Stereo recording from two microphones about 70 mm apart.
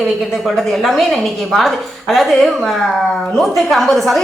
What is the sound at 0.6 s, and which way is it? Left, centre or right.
Speech, centre.